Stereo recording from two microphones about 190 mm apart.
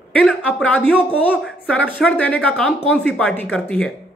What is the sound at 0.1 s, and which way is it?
Speech, 10° left (ahead or behind).